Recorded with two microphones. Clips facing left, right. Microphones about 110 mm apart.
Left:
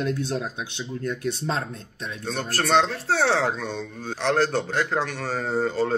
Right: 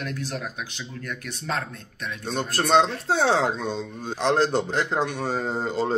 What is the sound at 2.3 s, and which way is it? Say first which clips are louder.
Speech: right 1 dB; 20° right (ahead or behind).